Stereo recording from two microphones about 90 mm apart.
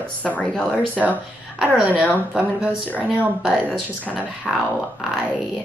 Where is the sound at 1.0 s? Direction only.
15° right (ahead or behind).